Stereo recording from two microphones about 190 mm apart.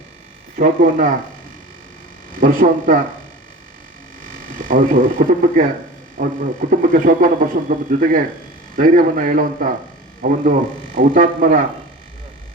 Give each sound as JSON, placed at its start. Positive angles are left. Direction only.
{"t": 0.5, "sound": "speech", "side_deg": -45}
{"t": 2.3, "sound": "speech", "side_deg": -45}
{"t": 4.2, "sound": "speech", "side_deg": -45}